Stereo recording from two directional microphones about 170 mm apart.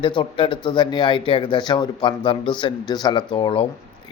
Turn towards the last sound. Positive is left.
turn(degrees=35)  # may be behind; listen again after turning